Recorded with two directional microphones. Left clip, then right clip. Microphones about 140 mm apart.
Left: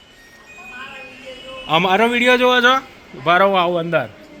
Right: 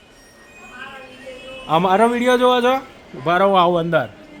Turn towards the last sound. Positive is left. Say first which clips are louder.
# right 2 dB
turn(degrees=-30)  # may be behind; listen again after turning